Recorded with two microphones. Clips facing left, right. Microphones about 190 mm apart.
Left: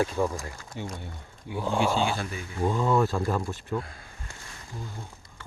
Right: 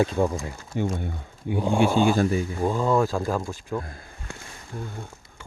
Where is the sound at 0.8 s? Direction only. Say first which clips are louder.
Right 10 dB; 55° right (ahead or behind).